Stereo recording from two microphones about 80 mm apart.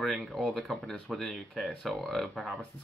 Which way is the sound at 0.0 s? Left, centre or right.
Centre.